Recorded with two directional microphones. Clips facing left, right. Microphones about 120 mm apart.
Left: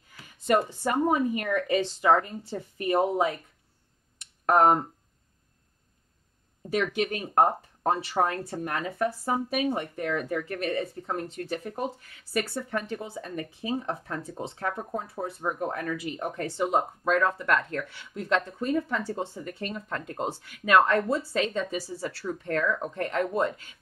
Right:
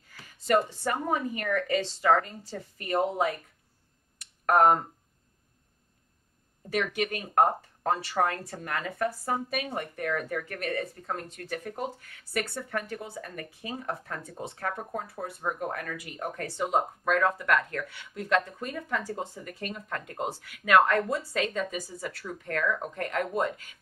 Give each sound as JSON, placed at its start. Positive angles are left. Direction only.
{"t": 0.8, "sound": "speech", "side_deg": 20}
{"t": 4.5, "sound": "speech", "side_deg": 25}
{"t": 6.7, "sound": "speech", "side_deg": 25}